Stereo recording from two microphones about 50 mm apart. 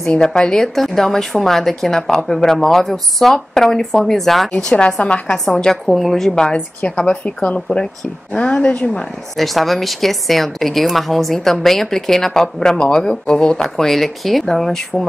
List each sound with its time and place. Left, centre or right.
0.1 s a woman's voice: centre
4.5 s speech: centre
5.5 s a woman's voice: centre
5.9 s a woman's voice: centre
9.4 s a woman's voice: centre